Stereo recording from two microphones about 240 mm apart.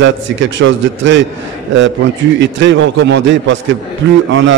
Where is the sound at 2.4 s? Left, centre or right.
Right.